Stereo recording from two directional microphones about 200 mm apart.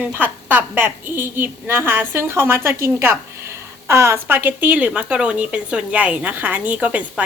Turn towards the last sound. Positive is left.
turn(degrees=-5)  # may be behind; listen again after turning